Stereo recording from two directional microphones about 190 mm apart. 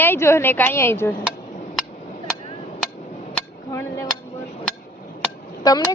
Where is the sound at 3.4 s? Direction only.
15° left (ahead or behind).